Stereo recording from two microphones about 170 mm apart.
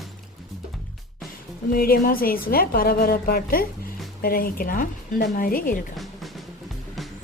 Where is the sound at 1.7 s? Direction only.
60° left (ahead or behind).